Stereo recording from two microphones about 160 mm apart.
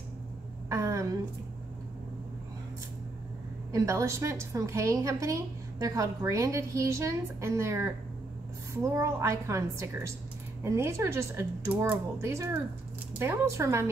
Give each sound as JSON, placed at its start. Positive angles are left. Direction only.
{"t": 0.7, "sound": "a sound", "side_deg": -20}
{"t": 3.7, "sound": "a woman's voice", "side_deg": -20}
{"t": 8.9, "sound": "speech", "side_deg": -20}